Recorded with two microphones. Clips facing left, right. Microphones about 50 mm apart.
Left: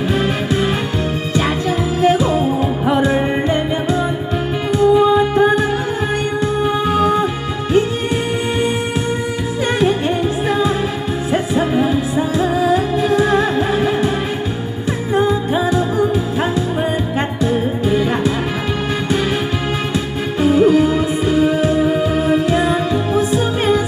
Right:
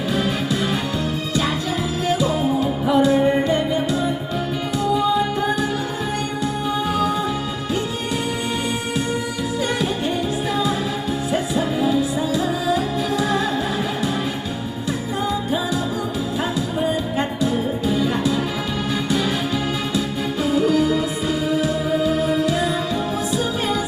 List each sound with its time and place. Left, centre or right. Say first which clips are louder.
2.0 s music: left 6 dB; left
6.8 s music: left 6 dB; left
9.8 s music: left 6 dB; left
15.1 s music: left 8 dB; left
20.4 s music: left 7 dB; left